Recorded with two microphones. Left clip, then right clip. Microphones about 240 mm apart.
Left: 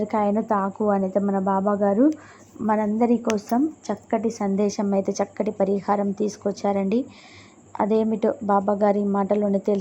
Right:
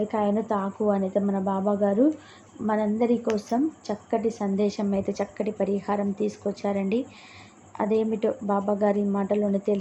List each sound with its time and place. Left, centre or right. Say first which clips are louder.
0.1 s a woman's voice: left 3 dB; centre